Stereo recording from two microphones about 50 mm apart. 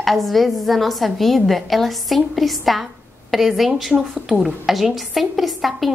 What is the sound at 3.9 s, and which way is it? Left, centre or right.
Speech, right.